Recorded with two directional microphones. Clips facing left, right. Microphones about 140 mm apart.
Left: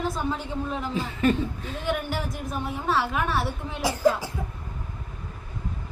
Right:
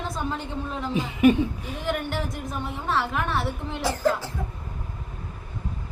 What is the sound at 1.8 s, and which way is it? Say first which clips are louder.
A man's voice: even; centre (ahead or behind).